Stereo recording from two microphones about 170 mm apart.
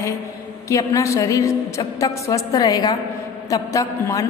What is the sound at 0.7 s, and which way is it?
A woman's voice, 20° left (ahead or behind).